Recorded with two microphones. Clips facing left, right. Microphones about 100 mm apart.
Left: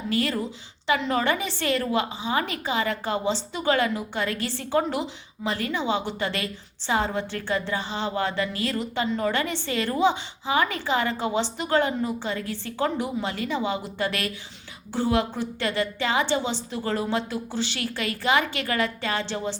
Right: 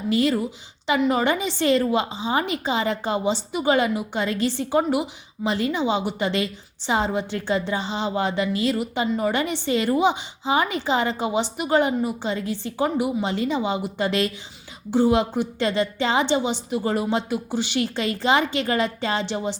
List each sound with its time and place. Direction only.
0.1 s a woman's voice: 20° right (ahead or behind)